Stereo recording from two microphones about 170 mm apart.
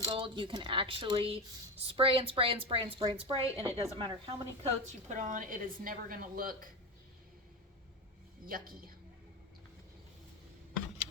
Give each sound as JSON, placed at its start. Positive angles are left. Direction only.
{"t": 0.0, "sound": "a woman's voice", "side_deg": -30}
{"t": 8.4, "sound": "a woman's voice", "side_deg": -55}